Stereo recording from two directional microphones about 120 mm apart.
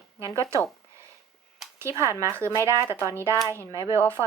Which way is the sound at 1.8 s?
25° right (ahead or behind).